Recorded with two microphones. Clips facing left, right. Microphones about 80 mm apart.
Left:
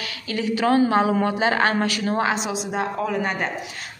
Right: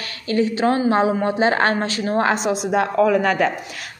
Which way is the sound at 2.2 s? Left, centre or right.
Right.